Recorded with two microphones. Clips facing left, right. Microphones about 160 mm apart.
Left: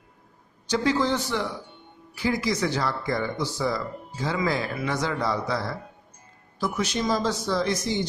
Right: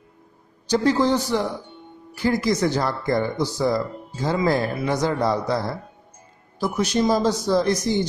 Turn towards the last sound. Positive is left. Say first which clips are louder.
# right 5 dB
turn(degrees=-45)  # may be behind; listen again after turning